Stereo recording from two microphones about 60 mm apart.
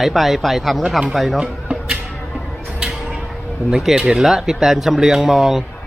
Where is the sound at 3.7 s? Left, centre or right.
Centre.